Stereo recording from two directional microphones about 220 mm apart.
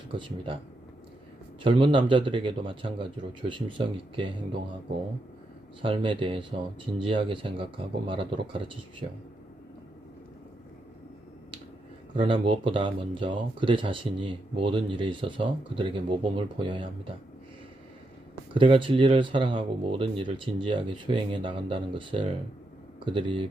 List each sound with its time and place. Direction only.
0.1 s speech: 25° right (ahead or behind)
1.6 s speech: 25° right (ahead or behind)
5.8 s speech: 25° right (ahead or behind)
12.1 s speech: 25° right (ahead or behind)
18.5 s speech: 25° right (ahead or behind)